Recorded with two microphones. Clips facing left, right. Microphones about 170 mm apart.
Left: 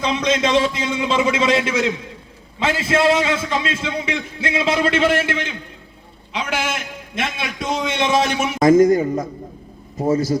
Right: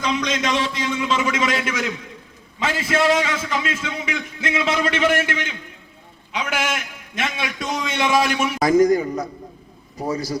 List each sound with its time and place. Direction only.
0.0 s a man's voice: 25° left (ahead or behind)